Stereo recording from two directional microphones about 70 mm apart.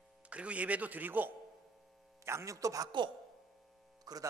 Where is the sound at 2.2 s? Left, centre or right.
Right.